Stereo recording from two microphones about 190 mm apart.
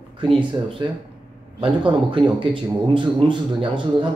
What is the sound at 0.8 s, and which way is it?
Speech, 25° right (ahead or behind).